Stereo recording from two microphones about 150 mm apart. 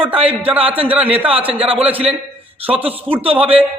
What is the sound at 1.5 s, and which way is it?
Speech, 40° right (ahead or behind).